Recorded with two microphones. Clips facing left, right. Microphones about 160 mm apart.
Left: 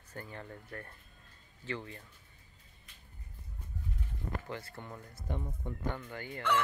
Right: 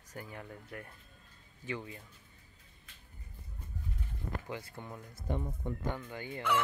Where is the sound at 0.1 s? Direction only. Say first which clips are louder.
Even; 10° right (ahead or behind).